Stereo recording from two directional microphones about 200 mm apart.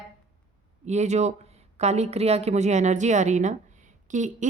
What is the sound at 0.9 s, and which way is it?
A woman's voice, 35° right (ahead or behind).